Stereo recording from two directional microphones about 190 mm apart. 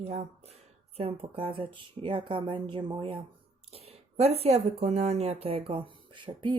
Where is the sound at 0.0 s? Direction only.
35° right (ahead or behind).